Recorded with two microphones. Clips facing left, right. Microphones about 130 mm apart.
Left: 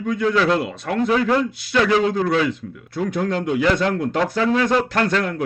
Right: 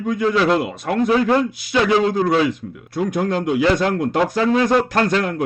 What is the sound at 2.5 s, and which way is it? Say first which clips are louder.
Speech: right 1 dB; 15° right (ahead or behind).